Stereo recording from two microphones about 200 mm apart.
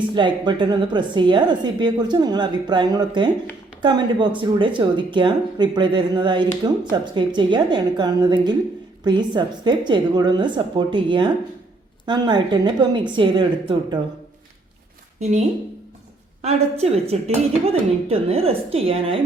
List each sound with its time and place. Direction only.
0.1 s a woman's voice: 25° right (ahead or behind)
16.4 s a woman's voice: 30° right (ahead or behind)